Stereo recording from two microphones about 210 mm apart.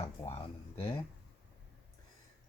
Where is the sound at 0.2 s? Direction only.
25° left (ahead or behind).